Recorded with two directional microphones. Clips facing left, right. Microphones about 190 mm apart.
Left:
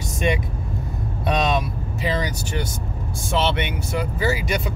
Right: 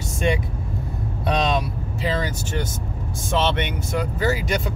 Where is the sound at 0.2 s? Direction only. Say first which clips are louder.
Even; 15° left (ahead or behind).